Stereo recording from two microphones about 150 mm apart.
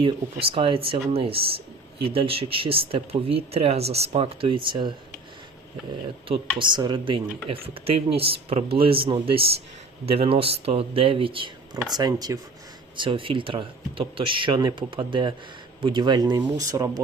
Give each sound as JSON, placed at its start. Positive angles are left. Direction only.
{"t": 0.0, "sound": "speech", "side_deg": -35}
{"t": 6.2, "sound": "speech", "side_deg": -35}